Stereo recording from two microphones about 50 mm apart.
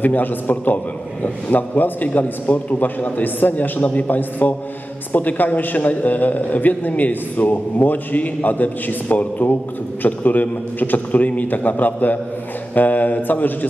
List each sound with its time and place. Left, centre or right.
0.0 s a man's voice: left